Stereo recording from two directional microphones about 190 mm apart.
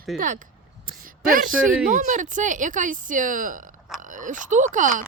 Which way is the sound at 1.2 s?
45° right (ahead or behind).